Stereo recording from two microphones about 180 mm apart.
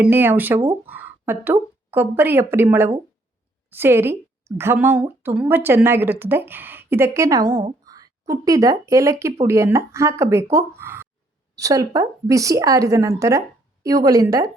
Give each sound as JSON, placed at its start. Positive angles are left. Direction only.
{"t": 0.0, "sound": "a woman's voice", "side_deg": -10}
{"t": 7.9, "sound": "a sound", "side_deg": -20}
{"t": 8.3, "sound": "a woman's voice", "side_deg": -20}